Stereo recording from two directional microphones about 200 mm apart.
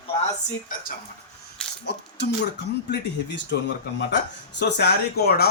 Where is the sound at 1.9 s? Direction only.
55° left (ahead or behind).